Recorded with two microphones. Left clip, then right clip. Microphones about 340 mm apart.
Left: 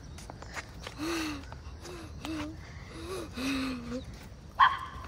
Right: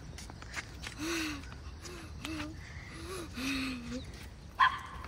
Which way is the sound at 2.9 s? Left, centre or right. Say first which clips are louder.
Left 4 dB; left.